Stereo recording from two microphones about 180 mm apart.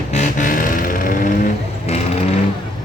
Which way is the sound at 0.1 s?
40° left (ahead or behind).